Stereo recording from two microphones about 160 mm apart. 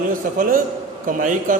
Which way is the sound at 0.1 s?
60° right (ahead or behind).